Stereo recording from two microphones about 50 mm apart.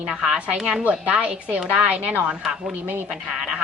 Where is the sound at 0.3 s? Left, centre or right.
Centre.